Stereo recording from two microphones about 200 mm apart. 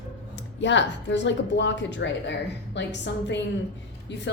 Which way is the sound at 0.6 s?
65° left (ahead or behind).